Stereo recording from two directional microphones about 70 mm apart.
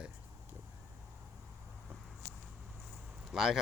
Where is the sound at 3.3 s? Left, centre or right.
Centre.